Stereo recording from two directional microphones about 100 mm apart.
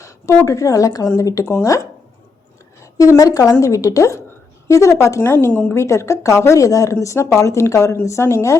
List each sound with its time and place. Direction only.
0.4 s a woman's voice: 35° left (ahead or behind)